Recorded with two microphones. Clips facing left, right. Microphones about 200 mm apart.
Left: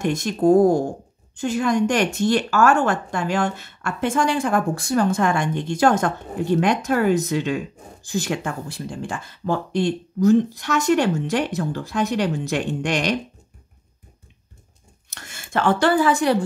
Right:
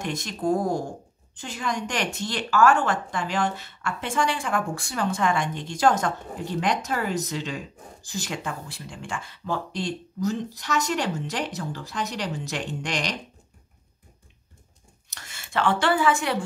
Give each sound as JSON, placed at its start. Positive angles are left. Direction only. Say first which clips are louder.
{"t": 0.0, "sound": "speech", "louder": "left 9 dB", "side_deg": 50}
{"t": 15.0, "sound": "speech", "louder": "left 4 dB", "side_deg": 50}